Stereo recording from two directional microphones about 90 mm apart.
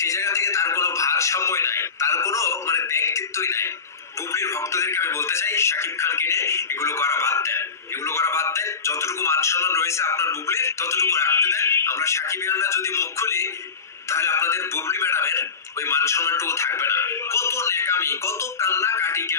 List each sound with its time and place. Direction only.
0.0 s music: 35° left (ahead or behind)